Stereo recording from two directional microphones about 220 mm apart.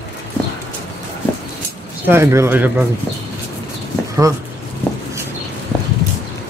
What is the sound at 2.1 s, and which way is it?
Speech, 10° right (ahead or behind).